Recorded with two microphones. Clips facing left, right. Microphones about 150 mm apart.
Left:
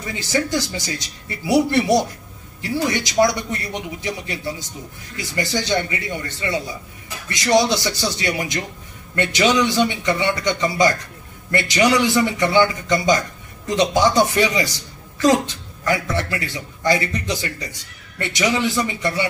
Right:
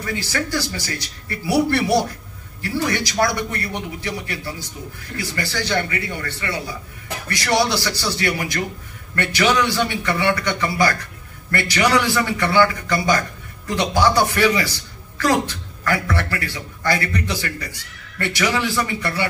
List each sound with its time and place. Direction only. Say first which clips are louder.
0.0 s a man's voice: left 2 dB; 20° left (ahead or behind)